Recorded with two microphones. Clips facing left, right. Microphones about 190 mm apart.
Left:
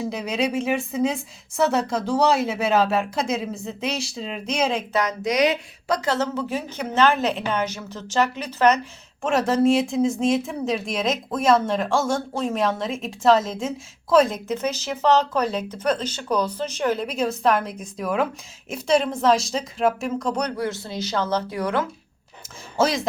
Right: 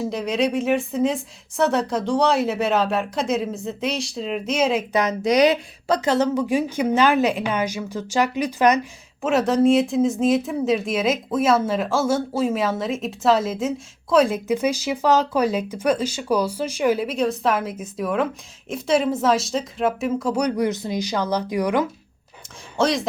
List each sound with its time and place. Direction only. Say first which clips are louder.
0.0 s speech: right 3 dB; centre (ahead or behind)
4.9 s a woman's voice: right 2 dB; 20° right (ahead or behind)
5.2 s speech: right 5 dB; 35° right (ahead or behind)
6.1 s a woman's voice: right 7 dB; 15° right (ahead or behind)
9.2 s a woman's voice: right 2 dB; centre (ahead or behind)
22.8 s speech: right 1 dB; centre (ahead or behind)